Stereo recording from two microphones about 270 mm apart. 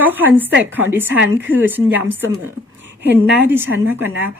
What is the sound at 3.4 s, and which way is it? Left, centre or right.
Speech, centre.